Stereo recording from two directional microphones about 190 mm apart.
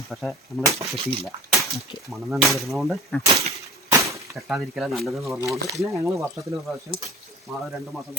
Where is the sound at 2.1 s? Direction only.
Centre (ahead or behind).